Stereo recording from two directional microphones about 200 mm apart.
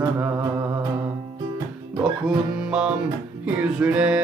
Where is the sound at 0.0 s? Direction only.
10° right (ahead or behind).